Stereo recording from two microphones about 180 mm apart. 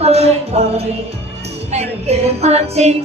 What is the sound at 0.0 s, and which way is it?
Music, 35° right (ahead or behind).